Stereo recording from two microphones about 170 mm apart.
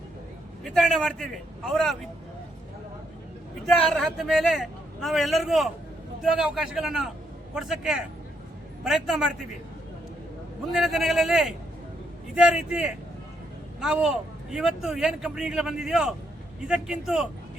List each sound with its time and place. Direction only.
0.6 s speech: centre (ahead or behind)
3.7 s speech: centre (ahead or behind)
10.7 s speech: centre (ahead or behind)